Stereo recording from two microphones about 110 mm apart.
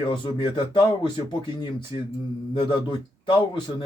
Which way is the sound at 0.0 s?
45° left (ahead or behind).